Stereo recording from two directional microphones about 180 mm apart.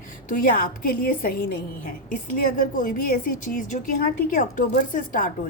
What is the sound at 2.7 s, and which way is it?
A woman's voice, 45° left (ahead or behind).